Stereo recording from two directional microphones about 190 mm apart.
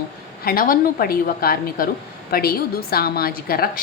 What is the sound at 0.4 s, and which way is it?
A woman's voice, 50° left (ahead or behind).